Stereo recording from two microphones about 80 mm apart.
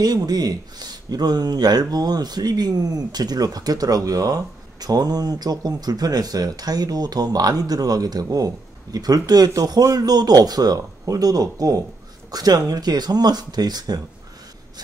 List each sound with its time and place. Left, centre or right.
0.0 s speech: right